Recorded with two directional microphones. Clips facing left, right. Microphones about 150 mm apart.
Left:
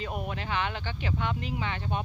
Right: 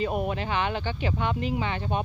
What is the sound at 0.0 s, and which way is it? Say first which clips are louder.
Speech: right 7 dB; 20° right (ahead or behind).